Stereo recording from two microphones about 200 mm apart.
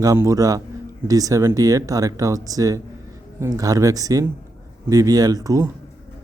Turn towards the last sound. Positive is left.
turn(degrees=-15)  # may be behind; listen again after turning